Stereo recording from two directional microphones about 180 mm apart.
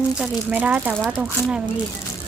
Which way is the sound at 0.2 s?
10° right (ahead or behind).